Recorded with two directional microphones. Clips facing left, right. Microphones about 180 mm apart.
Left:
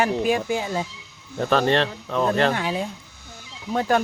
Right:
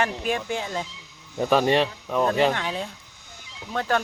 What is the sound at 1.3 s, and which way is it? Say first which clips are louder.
Speech: even; 10° right (ahead or behind).